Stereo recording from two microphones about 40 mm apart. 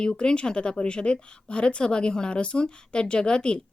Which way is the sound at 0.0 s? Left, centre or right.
Left.